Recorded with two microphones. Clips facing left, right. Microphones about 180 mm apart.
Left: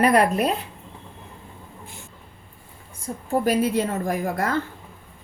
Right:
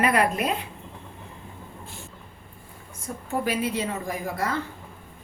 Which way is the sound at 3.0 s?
40° left (ahead or behind).